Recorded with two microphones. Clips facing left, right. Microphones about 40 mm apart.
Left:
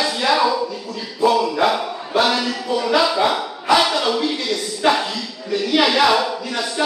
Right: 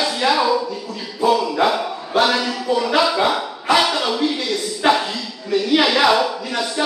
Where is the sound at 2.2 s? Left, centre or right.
Centre.